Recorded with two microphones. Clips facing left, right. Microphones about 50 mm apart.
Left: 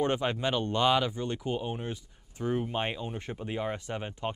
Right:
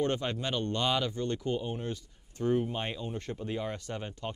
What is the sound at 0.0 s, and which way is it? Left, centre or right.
Speech, centre.